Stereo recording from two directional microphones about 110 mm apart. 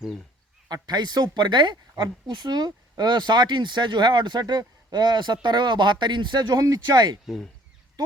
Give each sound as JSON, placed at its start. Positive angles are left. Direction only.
{"t": 0.7, "sound": "speech", "side_deg": -40}
{"t": 7.3, "sound": "speech", "side_deg": 5}